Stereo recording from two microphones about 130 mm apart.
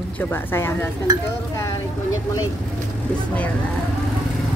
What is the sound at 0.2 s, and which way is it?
Speech, 15° left (ahead or behind).